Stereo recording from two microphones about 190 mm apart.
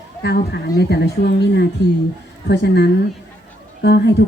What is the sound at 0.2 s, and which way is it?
Speech, 60° left (ahead or behind).